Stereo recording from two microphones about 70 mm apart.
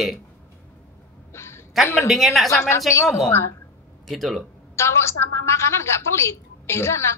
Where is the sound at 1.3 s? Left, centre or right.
Left.